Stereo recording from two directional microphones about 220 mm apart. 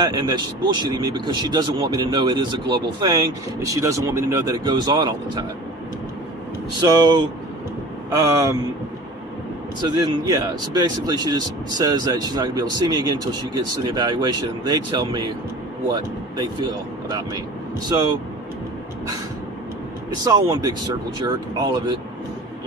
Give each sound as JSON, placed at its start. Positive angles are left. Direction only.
{"t": 0.0, "sound": "speech", "side_deg": -20}
{"t": 6.8, "sound": "speech", "side_deg": -15}
{"t": 9.8, "sound": "speech", "side_deg": -20}
{"t": 20.2, "sound": "speech", "side_deg": -20}